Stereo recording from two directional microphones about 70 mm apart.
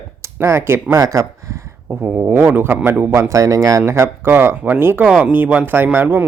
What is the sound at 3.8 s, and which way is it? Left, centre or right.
Speech, right.